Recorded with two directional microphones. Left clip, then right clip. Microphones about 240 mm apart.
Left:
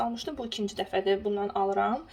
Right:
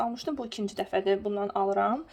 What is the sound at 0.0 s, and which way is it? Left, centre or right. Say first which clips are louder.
Speech: right 1 dB; right.